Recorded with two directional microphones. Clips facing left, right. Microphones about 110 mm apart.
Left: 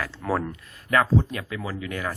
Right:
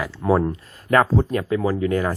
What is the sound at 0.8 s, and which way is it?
Speech, 40° right (ahead or behind).